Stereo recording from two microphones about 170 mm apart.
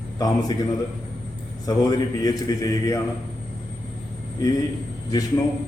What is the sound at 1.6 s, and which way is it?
A man's voice, 20° left (ahead or behind).